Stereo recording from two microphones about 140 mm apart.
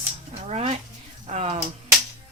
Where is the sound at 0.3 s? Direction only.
45° right (ahead or behind).